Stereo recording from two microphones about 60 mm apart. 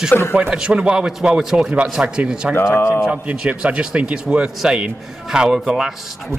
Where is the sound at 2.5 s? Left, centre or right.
Left.